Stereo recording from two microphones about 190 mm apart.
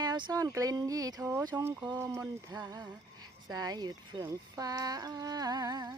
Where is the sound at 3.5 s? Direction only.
20° right (ahead or behind).